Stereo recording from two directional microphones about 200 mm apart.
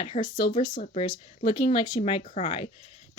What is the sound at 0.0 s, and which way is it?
Speech, 30° left (ahead or behind).